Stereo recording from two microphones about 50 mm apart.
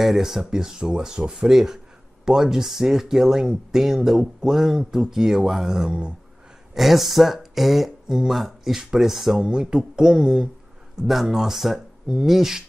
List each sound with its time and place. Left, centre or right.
0.0 s speech: centre
5.9 s speech: centre
6.7 s speech: centre
8.1 s speech: centre
9.4 s speech: centre